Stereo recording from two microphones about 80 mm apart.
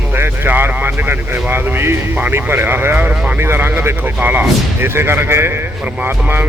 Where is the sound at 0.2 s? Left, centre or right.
Right.